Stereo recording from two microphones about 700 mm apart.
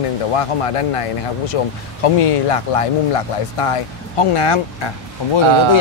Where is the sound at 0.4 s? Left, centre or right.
Left.